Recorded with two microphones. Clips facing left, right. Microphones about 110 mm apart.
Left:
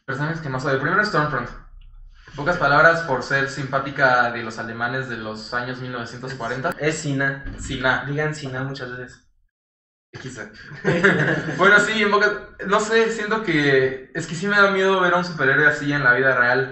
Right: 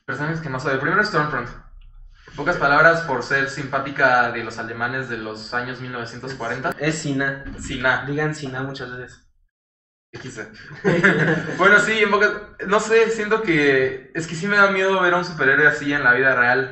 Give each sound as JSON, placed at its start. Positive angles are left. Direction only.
{"t": 0.0, "sound": "speech", "side_deg": 0}
{"t": 10.3, "sound": "speech", "side_deg": 0}